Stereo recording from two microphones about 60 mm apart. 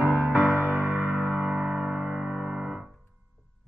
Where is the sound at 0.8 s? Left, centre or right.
Right.